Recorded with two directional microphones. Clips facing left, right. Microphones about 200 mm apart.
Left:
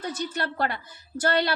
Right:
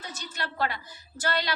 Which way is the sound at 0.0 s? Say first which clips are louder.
Left 8 dB; 60° left (ahead or behind).